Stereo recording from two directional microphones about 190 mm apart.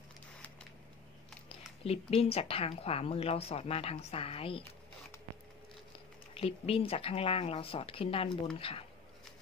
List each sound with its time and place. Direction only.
1.9 s speech: 30° left (ahead or behind)
6.3 s speech: 30° left (ahead or behind)